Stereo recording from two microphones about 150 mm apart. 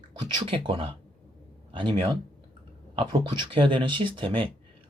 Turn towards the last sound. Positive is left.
turn(degrees=-35)  # may be behind; listen again after turning